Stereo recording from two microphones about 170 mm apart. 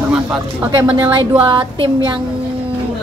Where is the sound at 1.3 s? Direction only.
30° right (ahead or behind).